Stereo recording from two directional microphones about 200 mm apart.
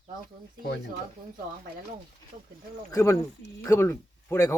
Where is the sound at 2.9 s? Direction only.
15° left (ahead or behind).